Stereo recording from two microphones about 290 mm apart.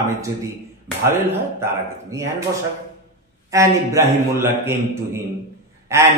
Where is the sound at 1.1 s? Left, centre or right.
Centre.